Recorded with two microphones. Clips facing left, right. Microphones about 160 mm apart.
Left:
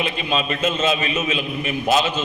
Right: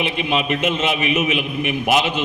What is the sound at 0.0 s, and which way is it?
A man's voice, 20° right (ahead or behind).